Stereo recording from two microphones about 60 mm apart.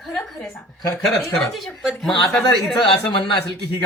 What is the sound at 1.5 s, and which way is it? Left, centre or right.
Speech, centre.